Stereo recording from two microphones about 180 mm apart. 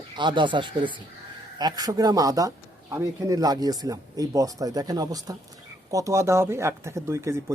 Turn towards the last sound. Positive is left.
turn(degrees=-15)  # may be behind; listen again after turning